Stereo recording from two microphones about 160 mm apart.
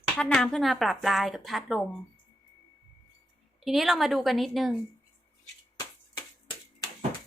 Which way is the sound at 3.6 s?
Centre (ahead or behind).